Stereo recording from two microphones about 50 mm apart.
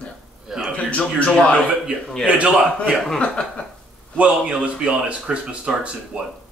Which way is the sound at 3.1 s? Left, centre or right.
Left.